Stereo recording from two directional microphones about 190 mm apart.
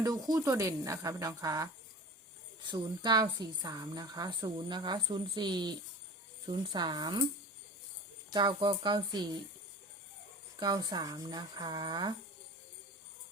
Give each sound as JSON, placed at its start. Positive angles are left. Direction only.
{"t": 0.0, "sound": "a woman's voice", "side_deg": -20}
{"t": 8.3, "sound": "a woman's voice", "side_deg": -25}
{"t": 10.6, "sound": "a woman's voice", "side_deg": -20}